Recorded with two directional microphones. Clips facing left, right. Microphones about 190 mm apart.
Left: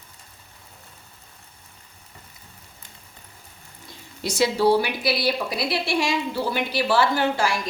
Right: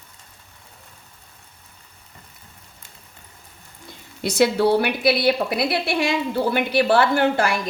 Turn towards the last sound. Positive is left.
turn(degrees=-55)  # may be behind; listen again after turning